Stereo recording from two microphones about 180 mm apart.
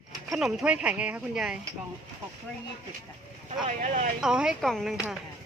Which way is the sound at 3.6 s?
40° right (ahead or behind).